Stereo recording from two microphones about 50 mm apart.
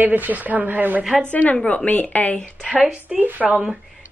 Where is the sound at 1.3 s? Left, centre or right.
Left.